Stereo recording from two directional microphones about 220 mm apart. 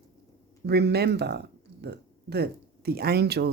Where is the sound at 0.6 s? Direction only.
50° right (ahead or behind).